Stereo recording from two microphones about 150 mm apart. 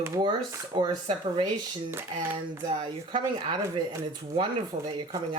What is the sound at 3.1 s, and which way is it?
Speech, 30° right (ahead or behind).